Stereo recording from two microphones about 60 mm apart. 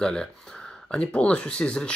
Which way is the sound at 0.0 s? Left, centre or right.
Centre.